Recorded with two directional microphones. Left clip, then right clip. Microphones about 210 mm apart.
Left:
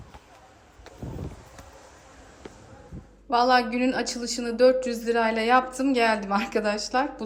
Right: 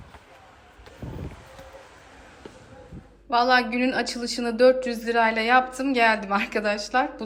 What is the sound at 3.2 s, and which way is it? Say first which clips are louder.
Speech: right 1 dB; 10° left (ahead or behind).